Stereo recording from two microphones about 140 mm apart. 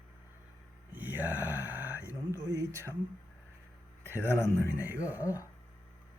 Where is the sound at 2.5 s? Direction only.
20° right (ahead or behind).